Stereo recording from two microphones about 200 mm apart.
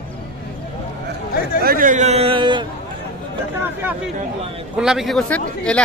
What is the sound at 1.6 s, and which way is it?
A man's voice, 40° right (ahead or behind).